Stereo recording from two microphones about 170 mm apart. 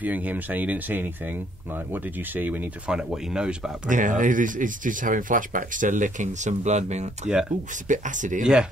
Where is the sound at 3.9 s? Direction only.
50° right (ahead or behind).